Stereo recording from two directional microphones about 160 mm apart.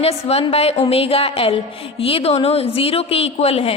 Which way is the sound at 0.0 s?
40° left (ahead or behind).